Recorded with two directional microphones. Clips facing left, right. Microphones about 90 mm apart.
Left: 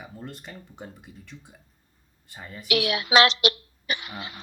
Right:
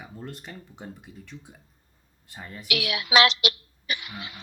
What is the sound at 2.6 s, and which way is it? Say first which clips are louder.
Speech: left 5 dB; 35° left (ahead or behind).